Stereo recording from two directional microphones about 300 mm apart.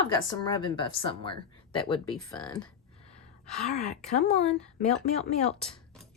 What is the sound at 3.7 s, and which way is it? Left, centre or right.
Speech, left.